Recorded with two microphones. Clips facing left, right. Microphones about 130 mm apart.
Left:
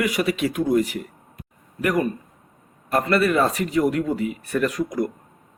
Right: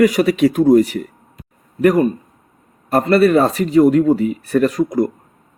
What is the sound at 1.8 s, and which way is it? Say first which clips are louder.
Speech: right 9 dB; 30° right (ahead or behind).